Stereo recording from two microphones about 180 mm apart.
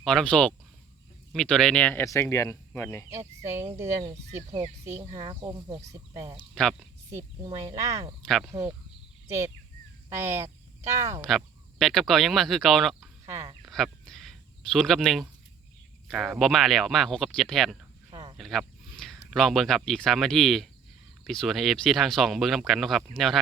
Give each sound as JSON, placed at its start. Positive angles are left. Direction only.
{"t": 0.0, "sound": "speech", "side_deg": 0}
{"t": 3.1, "sound": "speech", "side_deg": -15}
{"t": 6.5, "sound": "speech", "side_deg": 0}
{"t": 7.4, "sound": "speech", "side_deg": -20}
{"t": 8.2, "sound": "speech", "side_deg": 0}
{"t": 10.2, "sound": "speech", "side_deg": -15}
{"t": 11.2, "sound": "speech", "side_deg": 0}
{"t": 13.2, "sound": "speech", "side_deg": -20}
{"t": 13.7, "sound": "a sound", "side_deg": 0}
{"t": 16.0, "sound": "speech", "side_deg": 0}
{"t": 18.1, "sound": "a sound", "side_deg": -30}
{"t": 18.3, "sound": "speech", "side_deg": 0}